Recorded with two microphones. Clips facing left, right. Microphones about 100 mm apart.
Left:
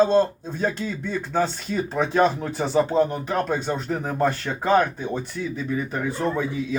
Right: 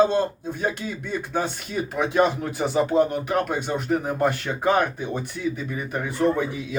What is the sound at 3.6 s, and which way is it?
Speech, 30° left (ahead or behind).